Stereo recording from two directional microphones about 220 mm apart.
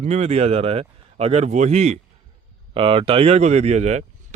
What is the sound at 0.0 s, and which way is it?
Speech, 30° right (ahead or behind).